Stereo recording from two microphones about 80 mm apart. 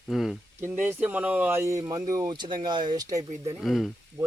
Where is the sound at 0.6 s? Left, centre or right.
Right.